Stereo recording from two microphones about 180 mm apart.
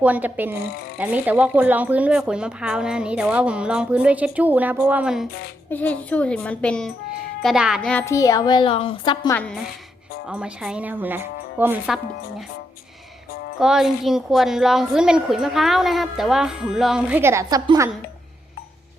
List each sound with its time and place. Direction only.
0.0 s speech: 10° right (ahead or behind)
5.7 s a woman's voice: 10° left (ahead or behind); by 9.3 s 25° left (ahead or behind)
9.3 s a woman's voice: 10° left (ahead or behind)
10.2 s speech: 5° right (ahead or behind)
13.6 s a woman's voice: 5° right (ahead or behind); by 17.9 s 20° right (ahead or behind)